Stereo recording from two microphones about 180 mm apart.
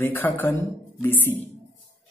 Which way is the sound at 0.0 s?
10° left (ahead or behind).